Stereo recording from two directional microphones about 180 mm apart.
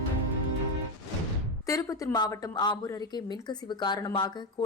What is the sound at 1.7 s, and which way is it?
Speech, 20° left (ahead or behind).